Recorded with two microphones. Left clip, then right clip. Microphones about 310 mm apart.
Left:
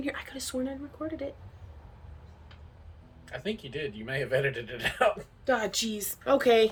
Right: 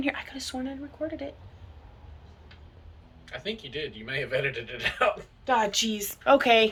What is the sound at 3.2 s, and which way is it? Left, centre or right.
A man's voice, centre.